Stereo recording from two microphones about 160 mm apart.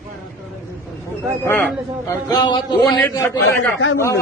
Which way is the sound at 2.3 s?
25° left (ahead or behind).